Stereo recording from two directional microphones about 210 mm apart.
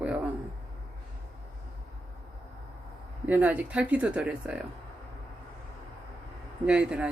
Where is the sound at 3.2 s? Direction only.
10° right (ahead or behind).